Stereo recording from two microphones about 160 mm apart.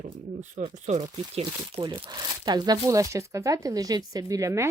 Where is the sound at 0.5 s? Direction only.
45° right (ahead or behind).